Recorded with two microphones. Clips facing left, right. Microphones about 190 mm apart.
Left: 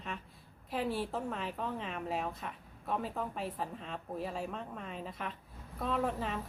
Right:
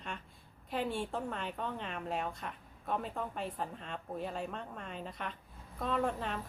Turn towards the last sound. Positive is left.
turn(degrees=0)  # may be behind; listen again after turning